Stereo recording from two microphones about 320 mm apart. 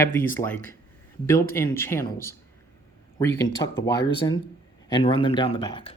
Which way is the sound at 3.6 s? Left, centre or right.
Left.